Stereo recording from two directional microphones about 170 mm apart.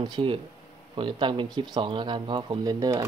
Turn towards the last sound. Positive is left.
turn(degrees=-20)  # may be behind; listen again after turning